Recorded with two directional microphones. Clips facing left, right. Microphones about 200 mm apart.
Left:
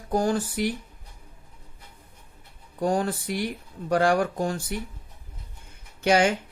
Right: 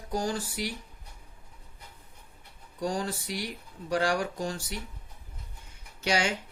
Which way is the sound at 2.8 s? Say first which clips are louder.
Left 6 dB; 55° left (ahead or behind).